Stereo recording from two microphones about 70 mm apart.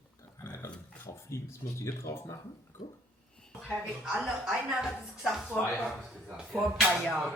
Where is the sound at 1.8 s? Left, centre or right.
Left.